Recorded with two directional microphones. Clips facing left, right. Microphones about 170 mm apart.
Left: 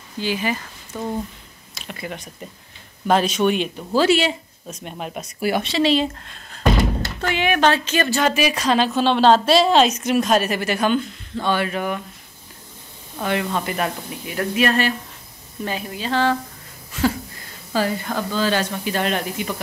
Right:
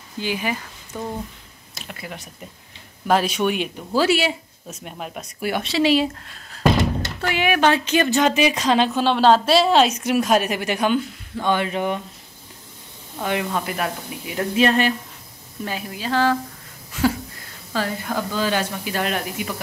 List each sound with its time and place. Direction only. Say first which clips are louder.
0.2 s a woman's voice: left 2 dB; 15° right (ahead or behind)
4.9 s a woman's voice: left 3 dB; 5° left (ahead or behind); by 9.0 s 20° right (ahead or behind)
9.0 s a woman's voice: left 2 dB; 5° right (ahead or behind); by 12.0 s 20° right (ahead or behind)
13.2 s a woman's voice: left 1 dB; 10° right (ahead or behind)
13.6 s speech: left 1 dB; centre (ahead or behind)
14.2 s a woman's voice: right 1 dB; 15° right (ahead or behind)
15.6 s speech: left 1 dB; 5° right (ahead or behind)
18.0 s a woman's voice: left 1 dB; 10° right (ahead or behind)